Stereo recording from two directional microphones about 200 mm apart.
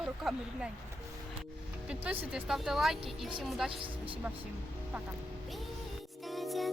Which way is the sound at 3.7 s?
25° right (ahead or behind).